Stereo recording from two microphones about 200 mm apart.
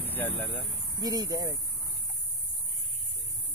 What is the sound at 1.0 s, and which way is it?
Speech, 20° right (ahead or behind).